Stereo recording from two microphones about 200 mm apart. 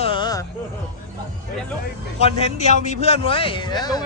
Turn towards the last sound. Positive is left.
turn(degrees=20)  # may be behind; listen again after turning